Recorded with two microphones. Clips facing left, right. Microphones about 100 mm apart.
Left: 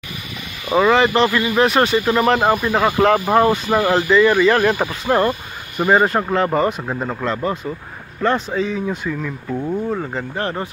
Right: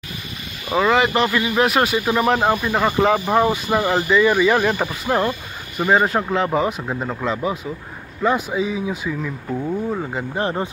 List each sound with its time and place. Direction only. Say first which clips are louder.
0.7 s speech: left 3 dB; centre (ahead or behind)
10.3 s speech: right 3 dB; 15° right (ahead or behind)